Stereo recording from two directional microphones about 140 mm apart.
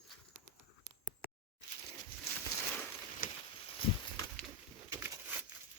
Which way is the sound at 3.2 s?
90° left.